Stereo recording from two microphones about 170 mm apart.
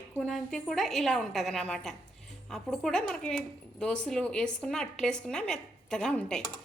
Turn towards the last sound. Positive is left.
turn(degrees=5)  # may be behind; listen again after turning